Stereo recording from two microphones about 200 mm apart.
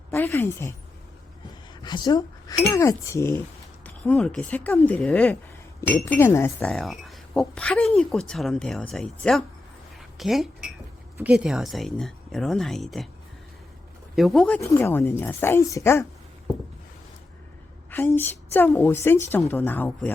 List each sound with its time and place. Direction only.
0.1 s a woman's voice: 10° left (ahead or behind)
1.8 s a woman's voice: 20° left (ahead or behind); by 9.4 s 5° left (ahead or behind)
10.0 s a sound: centre (ahead or behind)
11.2 s a woman's voice: 5° right (ahead or behind)
14.2 s a woman's voice: centre (ahead or behind)
17.9 s a woman's voice: 10° left (ahead or behind)